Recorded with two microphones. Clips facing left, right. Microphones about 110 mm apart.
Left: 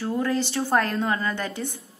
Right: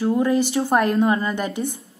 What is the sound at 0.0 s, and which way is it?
A woman's voice, 15° right (ahead or behind).